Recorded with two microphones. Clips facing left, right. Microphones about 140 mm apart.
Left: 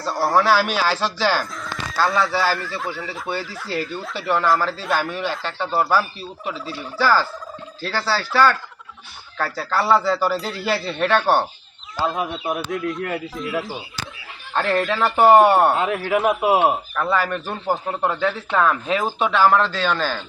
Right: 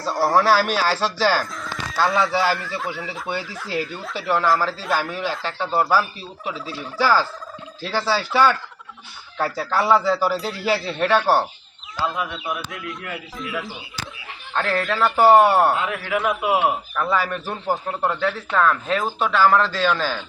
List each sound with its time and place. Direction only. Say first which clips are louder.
0.0 s speech: even; centre (ahead or behind)
2.3 s speech: right 1 dB; 20° right (ahead or behind)
2.6 s a man's voice: even; centre (ahead or behind); by 8.3 s 15° right (ahead or behind)
9.4 s a man's voice: right 1 dB; 15° right (ahead or behind)
11.9 s a man's voice: left 2 dB; 25° left (ahead or behind)
12.5 s speech: left 8 dB; 45° left (ahead or behind)
14.5 s speech: left 2 dB; centre (ahead or behind)
15.7 s a man's voice: left 3 dB; 25° left (ahead or behind)
16.9 s speech: left 1 dB; 5° left (ahead or behind)